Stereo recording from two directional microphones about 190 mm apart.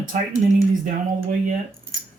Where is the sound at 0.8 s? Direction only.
40° right (ahead or behind).